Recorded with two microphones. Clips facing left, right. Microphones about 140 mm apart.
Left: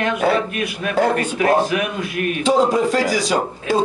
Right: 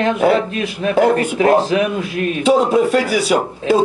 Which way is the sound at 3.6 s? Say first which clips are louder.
Right 5 dB; 25° right (ahead or behind).